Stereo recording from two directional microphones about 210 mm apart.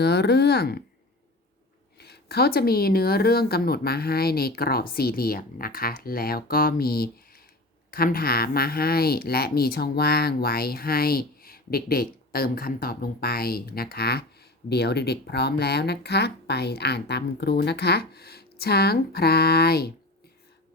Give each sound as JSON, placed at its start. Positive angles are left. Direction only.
{"t": 0.0, "sound": "speech", "side_deg": 50}
{"t": 2.0, "sound": "speech", "side_deg": 50}